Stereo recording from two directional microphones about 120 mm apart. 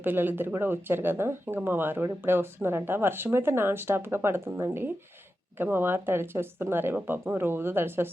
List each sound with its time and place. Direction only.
0.0 s speech: 15° right (ahead or behind)